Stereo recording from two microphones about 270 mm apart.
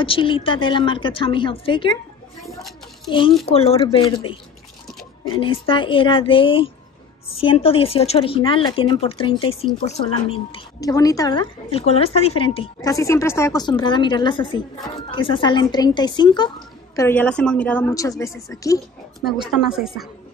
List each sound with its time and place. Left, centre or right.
0.0 s a woman's voice: centre
3.1 s a woman's voice: centre
19.2 s speech: centre